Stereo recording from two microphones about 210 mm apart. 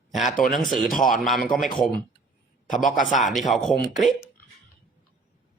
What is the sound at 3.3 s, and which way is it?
Speech, centre (ahead or behind).